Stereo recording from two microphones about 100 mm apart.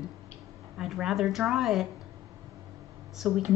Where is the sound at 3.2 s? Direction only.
5° right (ahead or behind).